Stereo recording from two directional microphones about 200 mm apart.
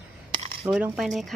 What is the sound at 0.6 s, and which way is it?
Speech, 5° right (ahead or behind).